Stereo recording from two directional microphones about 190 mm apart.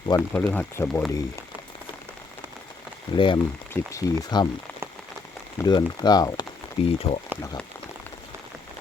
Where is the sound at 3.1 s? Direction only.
25° left (ahead or behind).